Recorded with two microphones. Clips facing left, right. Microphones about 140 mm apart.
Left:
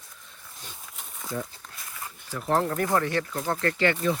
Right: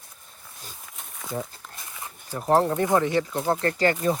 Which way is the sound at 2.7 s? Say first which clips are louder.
Right 3 dB; 20° right (ahead or behind).